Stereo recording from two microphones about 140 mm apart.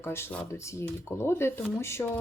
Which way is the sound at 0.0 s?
15° left (ahead or behind).